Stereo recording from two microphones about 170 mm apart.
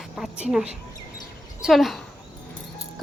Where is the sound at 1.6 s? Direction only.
Centre (ahead or behind).